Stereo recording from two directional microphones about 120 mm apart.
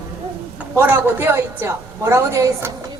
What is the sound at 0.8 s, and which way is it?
A woman's voice, 15° right (ahead or behind).